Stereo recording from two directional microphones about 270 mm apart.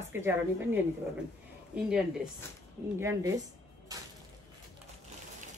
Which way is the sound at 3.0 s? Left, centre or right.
Centre.